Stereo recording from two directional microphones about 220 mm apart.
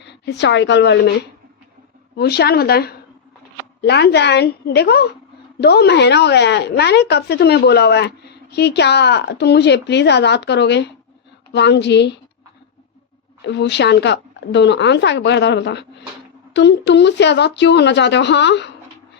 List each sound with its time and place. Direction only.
0.0 s a woman's voice: 50° left (ahead or behind)
2.1 s speech: 45° left (ahead or behind)
13.4 s speech: 50° left (ahead or behind)